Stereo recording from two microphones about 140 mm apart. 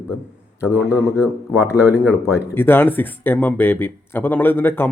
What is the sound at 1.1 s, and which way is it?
Speech, 20° left (ahead or behind).